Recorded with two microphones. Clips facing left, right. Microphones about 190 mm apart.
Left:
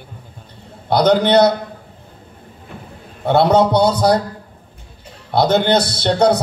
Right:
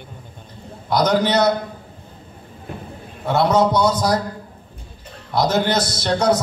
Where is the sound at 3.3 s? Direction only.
65° left (ahead or behind).